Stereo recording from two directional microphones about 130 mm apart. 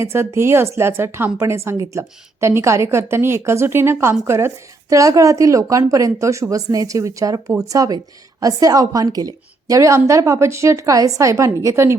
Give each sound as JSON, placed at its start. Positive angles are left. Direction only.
{"t": 0.0, "sound": "a woman's voice", "side_deg": -20}